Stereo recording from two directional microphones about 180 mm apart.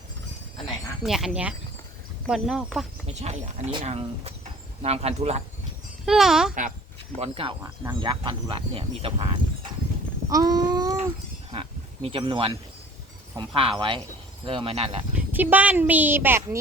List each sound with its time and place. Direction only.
1.0 s speech: centre (ahead or behind)
3.1 s speech: 35° right (ahead or behind)
6.1 s speech: 5° right (ahead or behind)
6.5 s speech: 50° right (ahead or behind)
7.2 s speech: 30° right (ahead or behind)
10.2 s speech: 20° right (ahead or behind)
11.5 s a sound: 30° right (ahead or behind)
13.3 s speech: 30° right (ahead or behind)
15.4 s a woman's voice: 10° right (ahead or behind)